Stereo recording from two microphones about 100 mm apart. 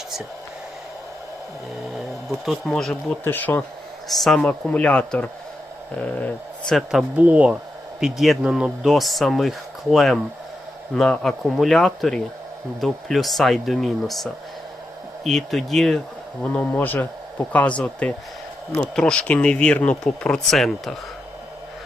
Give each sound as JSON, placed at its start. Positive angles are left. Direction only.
{"t": 2.4, "sound": "speech", "side_deg": 0}
{"t": 3.2, "sound": "speech", "side_deg": 20}
{"t": 4.1, "sound": "speech", "side_deg": 0}
{"t": 4.4, "sound": "speech", "side_deg": 15}
{"t": 6.7, "sound": "speech", "side_deg": 0}
{"t": 7.2, "sound": "speech", "side_deg": -15}
{"t": 7.9, "sound": "speech", "side_deg": -5}
{"t": 15.3, "sound": "speech", "side_deg": 5}
{"t": 16.4, "sound": "speech", "side_deg": 15}